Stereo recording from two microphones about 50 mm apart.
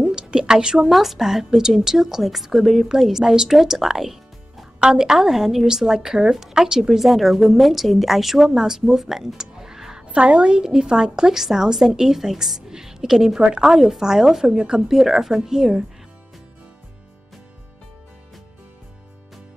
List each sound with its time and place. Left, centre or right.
0.0 s a woman's voice: centre
4.7 s a woman's voice: centre
10.0 s a woman's voice: right
13.7 s a woman's voice: centre